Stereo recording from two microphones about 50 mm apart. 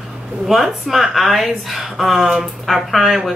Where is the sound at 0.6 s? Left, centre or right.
Centre.